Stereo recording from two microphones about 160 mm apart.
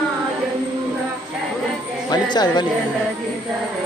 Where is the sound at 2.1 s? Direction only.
25° left (ahead or behind).